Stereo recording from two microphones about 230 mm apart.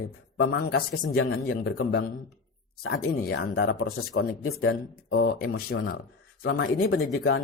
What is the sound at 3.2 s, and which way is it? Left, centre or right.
Speech, left.